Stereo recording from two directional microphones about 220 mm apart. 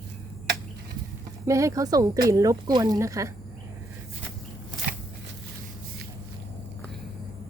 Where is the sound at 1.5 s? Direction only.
15° right (ahead or behind).